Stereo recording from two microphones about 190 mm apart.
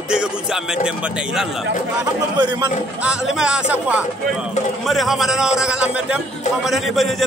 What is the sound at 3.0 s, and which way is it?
Speech, 5° right (ahead or behind).